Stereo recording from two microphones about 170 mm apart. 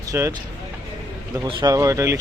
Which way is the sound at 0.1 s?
15° right (ahead or behind).